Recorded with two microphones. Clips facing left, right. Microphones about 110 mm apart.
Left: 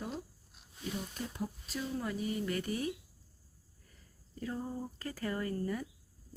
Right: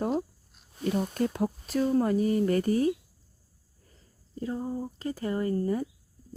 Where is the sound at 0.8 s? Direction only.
60° right (ahead or behind); by 2.9 s 40° right (ahead or behind).